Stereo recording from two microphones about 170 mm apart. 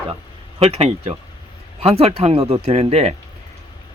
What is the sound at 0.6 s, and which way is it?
Speech, 35° right (ahead or behind).